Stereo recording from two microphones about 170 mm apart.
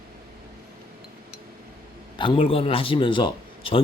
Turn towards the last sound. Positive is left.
turn(degrees=30)  # may be behind; listen again after turning